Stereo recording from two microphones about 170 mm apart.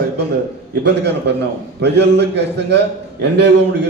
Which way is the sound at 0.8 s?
85° right.